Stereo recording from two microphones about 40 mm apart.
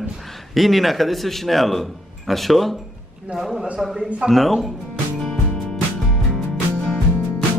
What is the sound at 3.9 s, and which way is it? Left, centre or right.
Speech, right.